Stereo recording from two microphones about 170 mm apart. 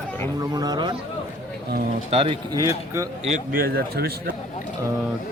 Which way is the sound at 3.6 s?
65° right (ahead or behind).